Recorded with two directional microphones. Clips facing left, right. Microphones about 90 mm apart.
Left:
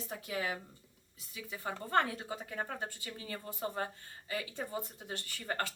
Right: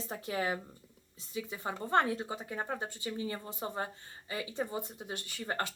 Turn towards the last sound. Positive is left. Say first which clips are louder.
# right 1 dB
turn(degrees=-20)  # may be behind; listen again after turning